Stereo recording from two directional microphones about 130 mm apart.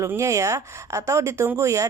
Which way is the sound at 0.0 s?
20° right (ahead or behind).